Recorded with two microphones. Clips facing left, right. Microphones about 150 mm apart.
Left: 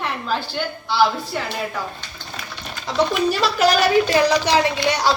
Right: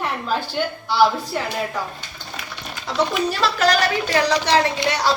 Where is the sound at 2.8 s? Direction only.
5° right (ahead or behind).